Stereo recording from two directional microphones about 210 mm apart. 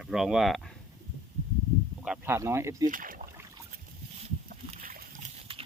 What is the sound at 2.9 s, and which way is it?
Rowboat, 40° right (ahead or behind).